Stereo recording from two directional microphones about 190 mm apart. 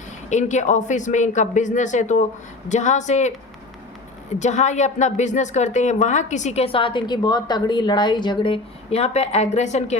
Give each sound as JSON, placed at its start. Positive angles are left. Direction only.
{"t": 0.3, "sound": "a woman's voice", "side_deg": 40}
{"t": 4.4, "sound": "a woman's voice", "side_deg": 40}